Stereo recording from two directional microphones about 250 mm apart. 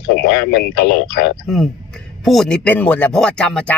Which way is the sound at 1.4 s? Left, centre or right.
Centre.